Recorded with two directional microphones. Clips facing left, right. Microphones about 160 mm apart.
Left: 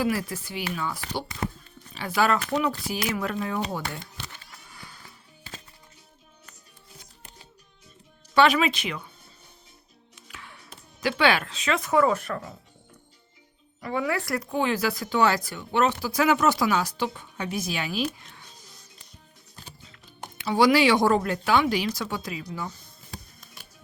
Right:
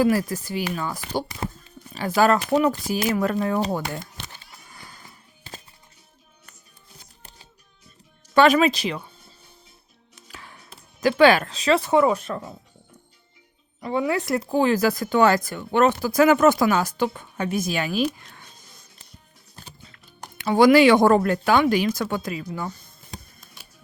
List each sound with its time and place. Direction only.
0.0 s speech: 40° right (ahead or behind)
8.3 s speech: 45° right (ahead or behind)
10.2 s music: 35° right (ahead or behind)
11.2 s speech: 40° right (ahead or behind); by 12.5 s 20° right (ahead or behind)
13.8 s speech: 25° right (ahead or behind)
14.5 s speech: 40° right (ahead or behind)
18.3 s music: 50° right (ahead or behind)
20.4 s speech: 50° right (ahead or behind)